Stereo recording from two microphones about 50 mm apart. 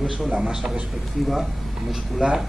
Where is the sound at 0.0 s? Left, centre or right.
Centre.